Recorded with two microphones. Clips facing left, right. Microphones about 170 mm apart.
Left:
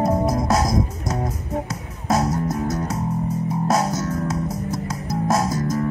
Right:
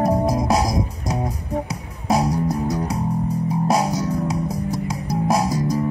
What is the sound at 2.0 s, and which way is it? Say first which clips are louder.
Music: right 1 dB; 15° right (ahead or behind).